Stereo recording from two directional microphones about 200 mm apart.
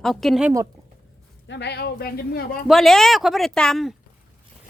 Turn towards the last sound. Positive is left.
turn(degrees=0)  # may be behind; listen again after turning